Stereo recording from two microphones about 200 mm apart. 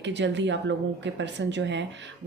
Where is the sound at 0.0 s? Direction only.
60° right (ahead or behind).